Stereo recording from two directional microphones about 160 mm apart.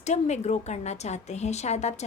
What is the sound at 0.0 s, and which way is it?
A woman's voice, 45° left (ahead or behind).